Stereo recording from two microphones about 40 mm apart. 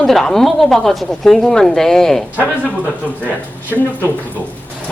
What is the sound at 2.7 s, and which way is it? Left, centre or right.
Speech, left.